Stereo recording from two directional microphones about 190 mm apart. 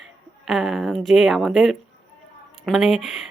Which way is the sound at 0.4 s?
Centre (ahead or behind).